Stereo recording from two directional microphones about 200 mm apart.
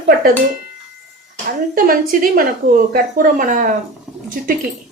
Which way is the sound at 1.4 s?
45° right (ahead or behind).